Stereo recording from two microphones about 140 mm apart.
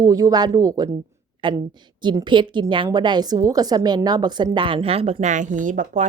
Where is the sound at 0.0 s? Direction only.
25° right (ahead or behind).